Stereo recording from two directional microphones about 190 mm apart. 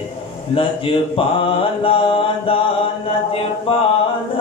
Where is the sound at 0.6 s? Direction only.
30° left (ahead or behind).